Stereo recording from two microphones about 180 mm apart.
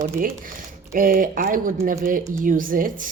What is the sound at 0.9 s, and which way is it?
Speech, 50° right (ahead or behind).